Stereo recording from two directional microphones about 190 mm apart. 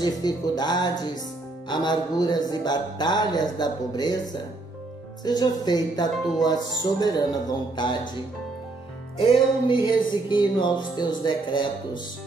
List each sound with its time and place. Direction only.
0.0 s music: 20° left (ahead or behind)
5.2 s music: 20° left (ahead or behind)
9.2 s music: 30° left (ahead or behind)